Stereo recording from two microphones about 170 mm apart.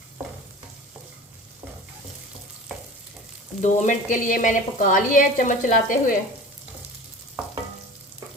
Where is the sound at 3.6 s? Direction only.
45° left (ahead or behind).